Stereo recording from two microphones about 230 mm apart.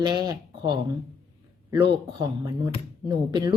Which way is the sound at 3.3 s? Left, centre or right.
Centre.